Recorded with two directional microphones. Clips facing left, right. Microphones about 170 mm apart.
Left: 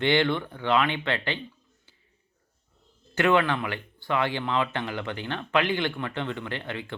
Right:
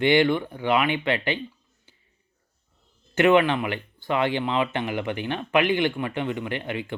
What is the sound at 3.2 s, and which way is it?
Speech, 20° right (ahead or behind).